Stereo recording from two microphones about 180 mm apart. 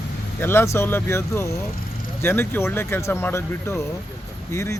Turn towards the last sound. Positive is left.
turn(degrees=15)  # may be behind; listen again after turning